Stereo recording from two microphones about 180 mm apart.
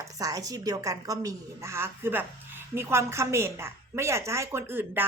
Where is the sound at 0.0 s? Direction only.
20° right (ahead or behind).